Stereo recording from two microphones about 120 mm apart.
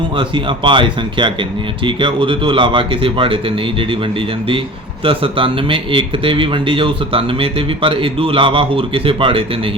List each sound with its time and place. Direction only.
0.2 s a man's voice: 45° right (ahead or behind)
5.0 s a man's voice: 45° right (ahead or behind)